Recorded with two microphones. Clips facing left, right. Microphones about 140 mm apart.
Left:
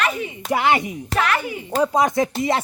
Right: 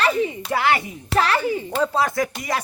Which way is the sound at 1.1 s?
30° right (ahead or behind).